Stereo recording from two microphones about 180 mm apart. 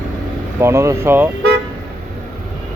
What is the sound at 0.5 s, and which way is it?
Speech, 15° right (ahead or behind).